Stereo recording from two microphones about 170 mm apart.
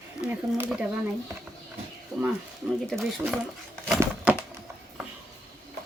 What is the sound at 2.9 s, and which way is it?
Speech, centre (ahead or behind).